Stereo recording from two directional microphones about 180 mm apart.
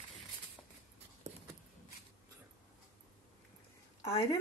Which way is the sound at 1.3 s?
20° right (ahead or behind).